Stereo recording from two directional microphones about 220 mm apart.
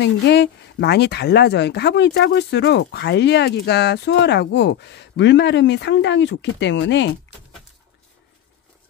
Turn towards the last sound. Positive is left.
turn(degrees=55)  # may be behind; listen again after turning